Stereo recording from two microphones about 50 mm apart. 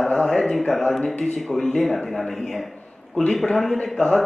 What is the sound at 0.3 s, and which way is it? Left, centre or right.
Speech, centre.